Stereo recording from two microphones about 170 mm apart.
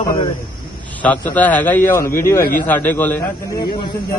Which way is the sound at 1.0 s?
10° left (ahead or behind).